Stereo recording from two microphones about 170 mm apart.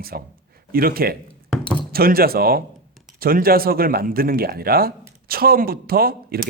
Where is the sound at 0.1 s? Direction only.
60° right (ahead or behind).